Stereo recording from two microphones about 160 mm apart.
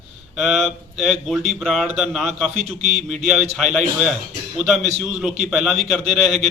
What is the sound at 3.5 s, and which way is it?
Speech, centre (ahead or behind).